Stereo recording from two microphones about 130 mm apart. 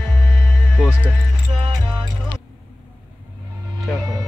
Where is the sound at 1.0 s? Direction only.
40° right (ahead or behind).